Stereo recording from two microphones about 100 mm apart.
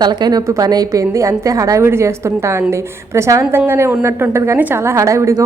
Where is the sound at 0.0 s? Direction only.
45° right (ahead or behind).